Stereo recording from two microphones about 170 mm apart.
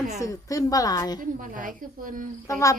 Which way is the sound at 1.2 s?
50° right (ahead or behind).